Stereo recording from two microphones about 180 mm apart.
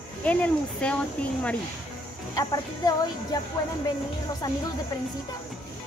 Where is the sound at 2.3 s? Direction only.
20° left (ahead or behind).